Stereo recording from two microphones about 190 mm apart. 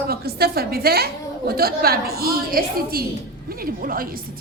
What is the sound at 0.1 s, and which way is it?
A woman's voice, 55° right (ahead or behind).